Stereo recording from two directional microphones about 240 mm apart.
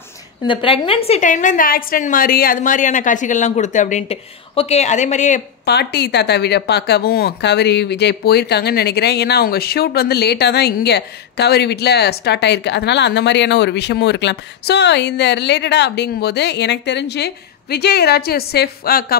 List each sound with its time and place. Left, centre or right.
0.5 s a woman's voice: left
5.7 s speech: left